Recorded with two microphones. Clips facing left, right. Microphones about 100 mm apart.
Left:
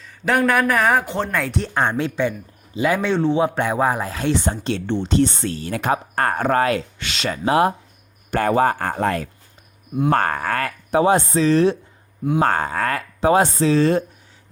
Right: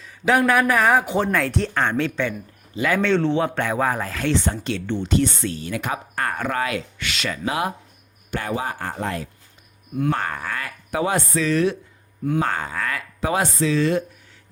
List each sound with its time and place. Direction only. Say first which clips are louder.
0.0 s speech: even; centre (ahead or behind)
1.7 s speech: left 1 dB; 15° left (ahead or behind); by 6.8 s 40° left (ahead or behind)
7.0 s speech: left 3 dB; 25° left (ahead or behind)
8.3 s speech: left 9 dB; 50° left (ahead or behind)
10.9 s speech: left 6 dB; 30° left (ahead or behind)
12.4 s speech: left 8 dB; 45° left (ahead or behind)